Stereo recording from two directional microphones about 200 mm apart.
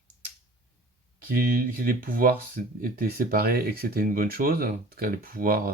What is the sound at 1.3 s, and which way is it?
Speech, 45° right (ahead or behind).